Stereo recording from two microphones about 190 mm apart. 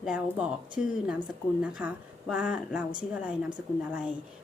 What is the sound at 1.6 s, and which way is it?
A woman's voice, 5° right (ahead or behind).